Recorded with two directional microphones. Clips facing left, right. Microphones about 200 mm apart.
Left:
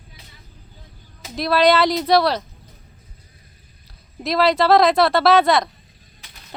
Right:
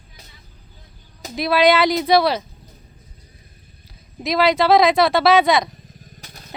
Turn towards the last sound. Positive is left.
turn(degrees=-45)  # may be behind; listen again after turning